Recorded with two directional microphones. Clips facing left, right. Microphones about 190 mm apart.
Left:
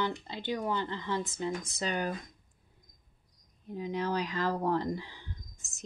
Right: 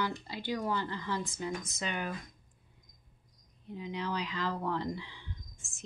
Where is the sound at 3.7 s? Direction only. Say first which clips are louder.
Left 4 dB; 45° left (ahead or behind).